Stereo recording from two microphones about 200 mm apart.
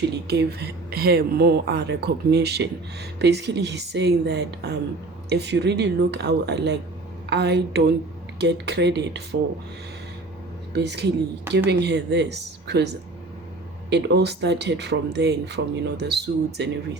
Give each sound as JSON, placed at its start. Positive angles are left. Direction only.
{"t": 0.3, "sound": "speech", "side_deg": -55}
{"t": 10.8, "sound": "speech", "side_deg": -55}